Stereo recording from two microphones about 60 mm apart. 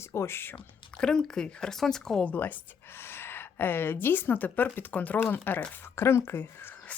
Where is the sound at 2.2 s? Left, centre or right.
Left.